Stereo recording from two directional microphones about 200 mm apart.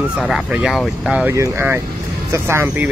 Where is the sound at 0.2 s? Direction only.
5° right (ahead or behind).